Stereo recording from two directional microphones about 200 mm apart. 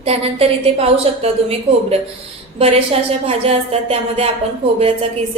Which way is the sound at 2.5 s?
30° right (ahead or behind).